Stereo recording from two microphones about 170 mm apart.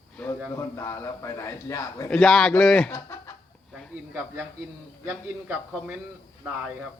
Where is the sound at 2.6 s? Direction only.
5° left (ahead or behind).